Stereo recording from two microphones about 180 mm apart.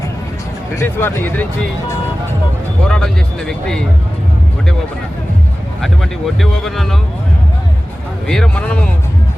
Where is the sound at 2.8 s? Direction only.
5° left (ahead or behind).